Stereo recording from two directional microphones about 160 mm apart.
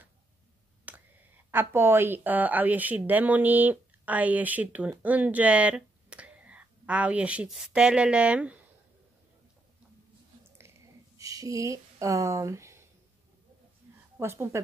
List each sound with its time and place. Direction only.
0.9 s a sound: 10° right (ahead or behind)
1.5 s a woman's voice: 15° right (ahead or behind)
11.1 s speech: 20° right (ahead or behind)
14.1 s a woman's voice: 15° right (ahead or behind)